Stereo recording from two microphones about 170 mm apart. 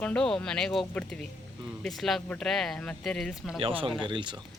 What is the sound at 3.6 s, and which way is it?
Speech, 30° right (ahead or behind).